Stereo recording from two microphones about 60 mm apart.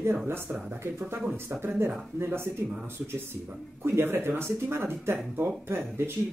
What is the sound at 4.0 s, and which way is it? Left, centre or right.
Speech, right.